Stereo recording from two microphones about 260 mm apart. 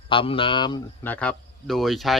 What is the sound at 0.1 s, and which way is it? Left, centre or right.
Speech, centre.